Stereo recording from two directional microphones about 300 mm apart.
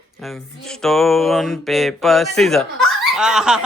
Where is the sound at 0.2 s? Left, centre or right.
Centre.